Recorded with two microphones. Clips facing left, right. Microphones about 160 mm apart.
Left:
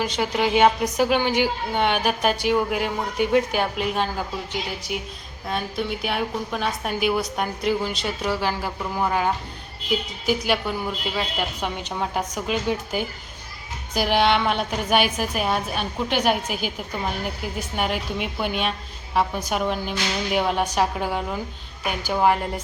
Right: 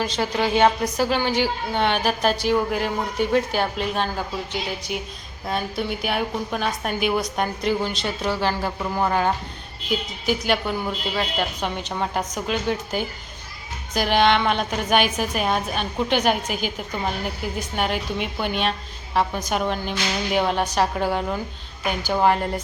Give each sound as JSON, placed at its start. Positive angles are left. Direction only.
{"t": 0.0, "sound": "a woman's voice", "side_deg": 10}